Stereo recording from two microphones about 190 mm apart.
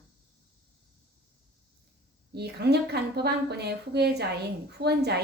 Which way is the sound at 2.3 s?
60° right (ahead or behind).